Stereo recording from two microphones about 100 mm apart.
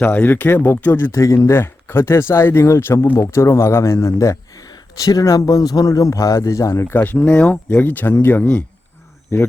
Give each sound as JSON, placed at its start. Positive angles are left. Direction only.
{"t": 0.0, "sound": "speech", "side_deg": 20}